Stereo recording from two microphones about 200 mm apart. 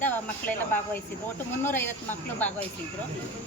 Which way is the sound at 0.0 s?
10° left (ahead or behind).